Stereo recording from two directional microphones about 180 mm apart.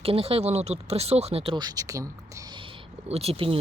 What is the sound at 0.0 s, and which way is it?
Speech, 30° right (ahead or behind).